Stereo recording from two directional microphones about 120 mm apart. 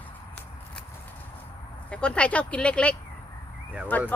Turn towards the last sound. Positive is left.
turn(degrees=15)  # may be behind; listen again after turning